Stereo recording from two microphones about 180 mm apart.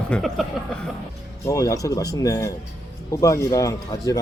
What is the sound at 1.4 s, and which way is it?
Speech, 20° left (ahead or behind).